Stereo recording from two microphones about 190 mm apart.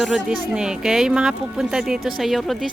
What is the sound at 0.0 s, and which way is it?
Speech, 5° right (ahead or behind).